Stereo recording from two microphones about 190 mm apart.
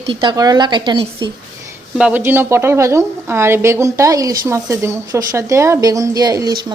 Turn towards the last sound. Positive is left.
turn(degrees=-20)  # may be behind; listen again after turning